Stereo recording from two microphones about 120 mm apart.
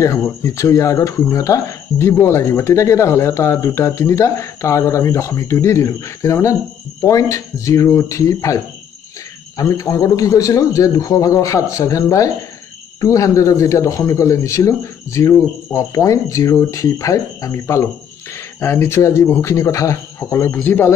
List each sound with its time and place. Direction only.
0.0 s speech: 25° left (ahead or behind)
9.6 s speech: 25° left (ahead or behind)